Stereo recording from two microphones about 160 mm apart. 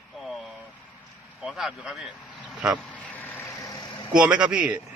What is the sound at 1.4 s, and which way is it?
Speech, centre (ahead or behind).